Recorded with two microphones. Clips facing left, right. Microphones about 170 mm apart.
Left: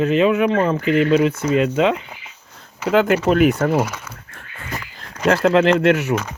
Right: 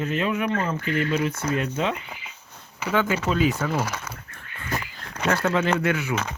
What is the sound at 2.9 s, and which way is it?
Speech, 70° left (ahead or behind).